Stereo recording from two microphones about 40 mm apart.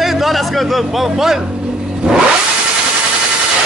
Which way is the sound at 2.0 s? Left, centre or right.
Centre.